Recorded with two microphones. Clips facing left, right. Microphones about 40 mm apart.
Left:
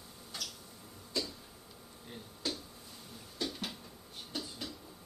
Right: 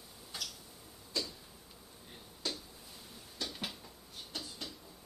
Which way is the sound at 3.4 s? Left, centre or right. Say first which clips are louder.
Left 4 dB; centre.